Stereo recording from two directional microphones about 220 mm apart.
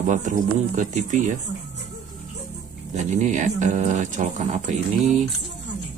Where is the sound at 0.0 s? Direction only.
35° right (ahead or behind).